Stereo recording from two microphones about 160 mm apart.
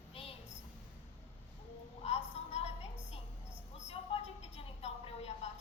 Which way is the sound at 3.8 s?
40° left (ahead or behind).